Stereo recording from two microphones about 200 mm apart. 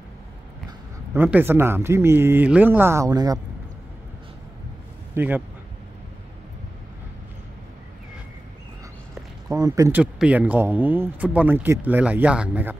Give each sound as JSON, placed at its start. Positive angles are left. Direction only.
{"t": 0.7, "sound": "speech", "side_deg": -10}
{"t": 5.1, "sound": "speech", "side_deg": -10}
{"t": 9.5, "sound": "speech", "side_deg": -15}